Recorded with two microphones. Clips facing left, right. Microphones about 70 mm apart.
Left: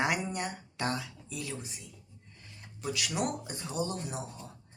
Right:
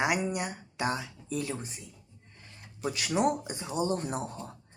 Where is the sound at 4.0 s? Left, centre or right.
Right.